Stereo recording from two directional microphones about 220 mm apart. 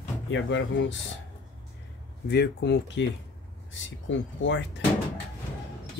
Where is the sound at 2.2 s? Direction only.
50° left (ahead or behind).